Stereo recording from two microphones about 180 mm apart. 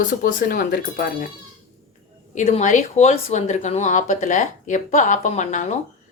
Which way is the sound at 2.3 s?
40° left (ahead or behind).